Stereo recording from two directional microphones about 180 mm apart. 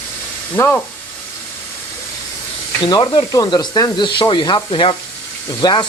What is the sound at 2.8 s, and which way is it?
Speech, 25° left (ahead or behind).